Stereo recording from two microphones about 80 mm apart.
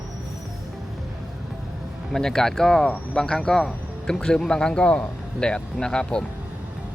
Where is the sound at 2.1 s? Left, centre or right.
Centre.